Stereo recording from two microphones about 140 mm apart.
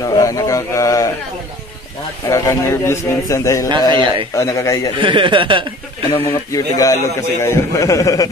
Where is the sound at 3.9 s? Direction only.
35° right (ahead or behind).